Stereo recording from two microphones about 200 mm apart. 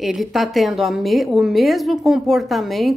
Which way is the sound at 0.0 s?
Centre (ahead or behind).